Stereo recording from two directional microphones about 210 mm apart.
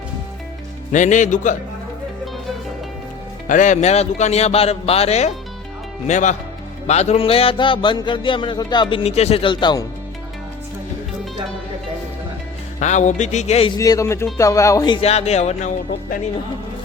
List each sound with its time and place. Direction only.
0.9 s speech: 35° left (ahead or behind)
3.4 s speech: 35° left (ahead or behind)
6.8 s music: 30° left (ahead or behind)
12.8 s speech: 35° left (ahead or behind)
13.7 s speech: 15° left (ahead or behind)
15.0 s speech: 30° left (ahead or behind)